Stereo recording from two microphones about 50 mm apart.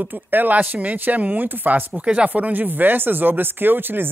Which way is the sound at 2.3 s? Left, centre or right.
Right.